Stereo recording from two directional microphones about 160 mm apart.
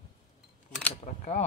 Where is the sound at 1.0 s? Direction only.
45° left (ahead or behind).